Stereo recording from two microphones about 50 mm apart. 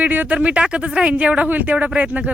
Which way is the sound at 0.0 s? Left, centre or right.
Right.